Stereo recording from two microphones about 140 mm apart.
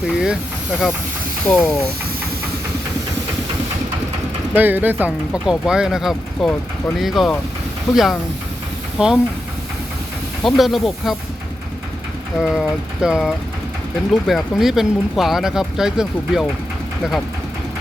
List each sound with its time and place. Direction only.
0.1 s hiss: 5° right (ahead or behind)
1.5 s speech: 5° left (ahead or behind)
4.5 s speech: 15° right (ahead or behind)
10.4 s speech: centre (ahead or behind)
12.4 s speech: 5° right (ahead or behind)